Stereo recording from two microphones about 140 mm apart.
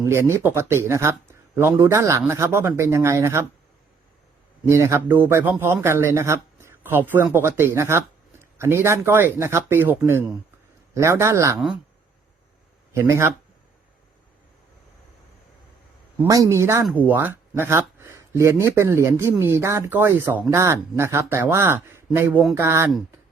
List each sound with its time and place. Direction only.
0.0 s speech: 20° right (ahead or behind)
4.6 s speech: 20° right (ahead or behind)
12.9 s speech: 20° right (ahead or behind)
16.2 s speech: 25° right (ahead or behind)